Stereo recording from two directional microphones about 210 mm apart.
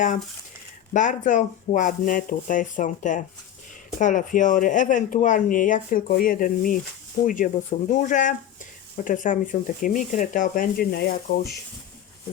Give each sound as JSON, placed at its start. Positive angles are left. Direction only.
{"t": 0.9, "sound": "speech", "side_deg": 35}